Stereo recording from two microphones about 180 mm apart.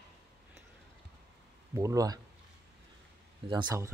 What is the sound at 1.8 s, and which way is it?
Speech, 20° right (ahead or behind).